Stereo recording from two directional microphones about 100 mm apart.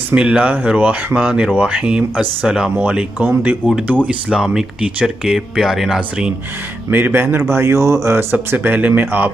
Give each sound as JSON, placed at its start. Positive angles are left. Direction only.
{"t": 0.1, "sound": "speech", "side_deg": -10}
{"t": 6.9, "sound": "speech", "side_deg": -20}